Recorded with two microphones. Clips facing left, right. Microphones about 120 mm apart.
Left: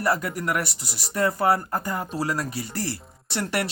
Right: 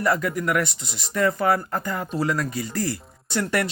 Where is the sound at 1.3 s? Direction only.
10° left (ahead or behind).